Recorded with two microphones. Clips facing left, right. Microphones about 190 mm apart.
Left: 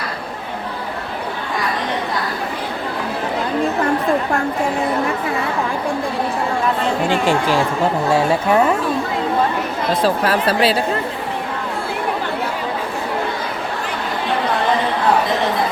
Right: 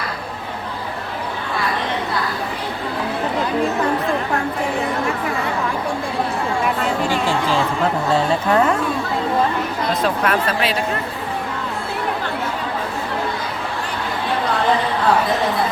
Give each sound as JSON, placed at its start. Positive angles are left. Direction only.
{"t": 7.3, "sound": "a woman's voice", "side_deg": 15}
{"t": 10.0, "sound": "speech", "side_deg": 35}